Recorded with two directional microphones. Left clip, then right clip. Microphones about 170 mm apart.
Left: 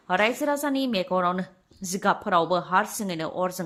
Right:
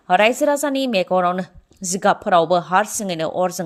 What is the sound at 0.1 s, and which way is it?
A woman's voice, 35° right (ahead or behind).